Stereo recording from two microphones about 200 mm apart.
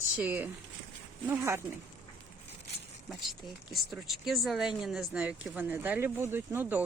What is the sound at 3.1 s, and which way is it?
Speech, centre (ahead or behind).